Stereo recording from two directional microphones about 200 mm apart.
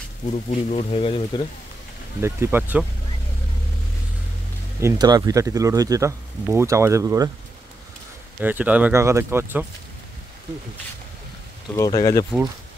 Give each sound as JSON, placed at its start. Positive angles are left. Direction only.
{"t": 0.3, "sound": "speech", "side_deg": 35}
{"t": 2.2, "sound": "speech", "side_deg": -10}
{"t": 4.7, "sound": "speech", "side_deg": -15}
{"t": 8.4, "sound": "speech", "side_deg": -10}
{"t": 11.7, "sound": "speech", "side_deg": 15}